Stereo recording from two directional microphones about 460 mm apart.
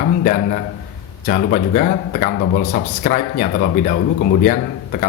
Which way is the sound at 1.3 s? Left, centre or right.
Centre.